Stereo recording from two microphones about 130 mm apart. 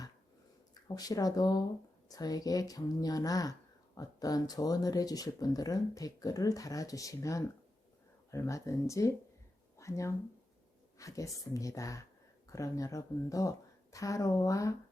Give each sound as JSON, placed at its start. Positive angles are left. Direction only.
{"t": 0.7, "sound": "speech", "side_deg": 30}